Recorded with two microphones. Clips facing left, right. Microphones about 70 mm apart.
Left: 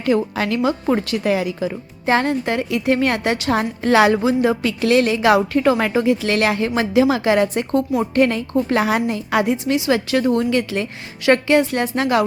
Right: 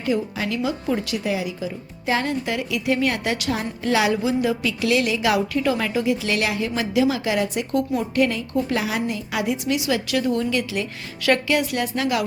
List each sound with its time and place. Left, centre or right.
0.0 s a woman's voice: left